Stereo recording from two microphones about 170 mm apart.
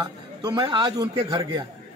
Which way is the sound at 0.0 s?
25° right (ahead or behind).